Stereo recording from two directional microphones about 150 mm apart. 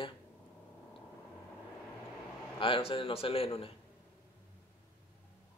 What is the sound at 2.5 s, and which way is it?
Speech, 35° left (ahead or behind).